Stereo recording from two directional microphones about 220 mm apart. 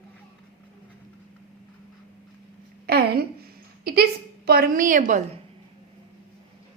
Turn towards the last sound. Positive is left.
turn(degrees=-35)  # may be behind; listen again after turning